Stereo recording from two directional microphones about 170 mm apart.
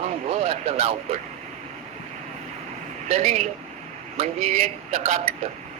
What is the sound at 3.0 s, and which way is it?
Speech, 35° right (ahead or behind).